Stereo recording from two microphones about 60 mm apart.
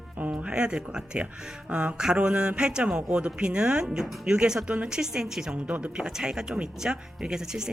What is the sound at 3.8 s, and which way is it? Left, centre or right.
Speech, centre.